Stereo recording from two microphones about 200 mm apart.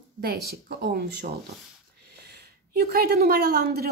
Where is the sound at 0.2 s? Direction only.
50° right (ahead or behind).